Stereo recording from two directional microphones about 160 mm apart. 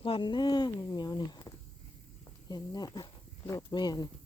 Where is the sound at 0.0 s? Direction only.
30° left (ahead or behind).